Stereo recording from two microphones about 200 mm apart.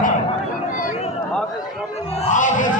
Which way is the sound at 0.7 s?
35° left (ahead or behind).